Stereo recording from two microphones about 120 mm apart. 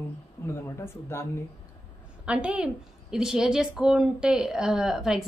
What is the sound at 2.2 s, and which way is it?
A woman's voice, 10° right (ahead or behind).